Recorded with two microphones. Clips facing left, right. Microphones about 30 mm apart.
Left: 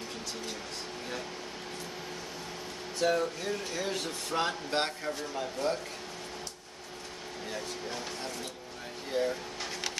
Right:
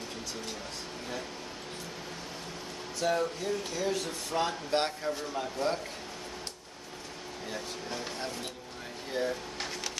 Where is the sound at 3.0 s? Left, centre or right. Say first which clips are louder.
Left 1 dB; centre.